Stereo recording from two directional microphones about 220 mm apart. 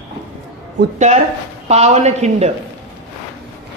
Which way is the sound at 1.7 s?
30° right (ahead or behind).